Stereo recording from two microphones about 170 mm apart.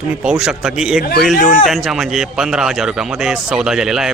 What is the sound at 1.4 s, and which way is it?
A man's voice, centre (ahead or behind).